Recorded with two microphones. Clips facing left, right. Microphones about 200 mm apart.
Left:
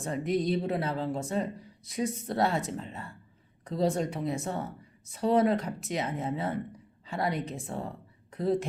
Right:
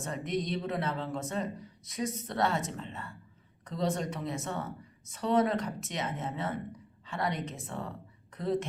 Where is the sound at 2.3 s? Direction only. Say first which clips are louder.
Left 2 dB; 35° left (ahead or behind).